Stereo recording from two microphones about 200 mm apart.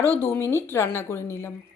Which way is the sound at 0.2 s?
10° left (ahead or behind).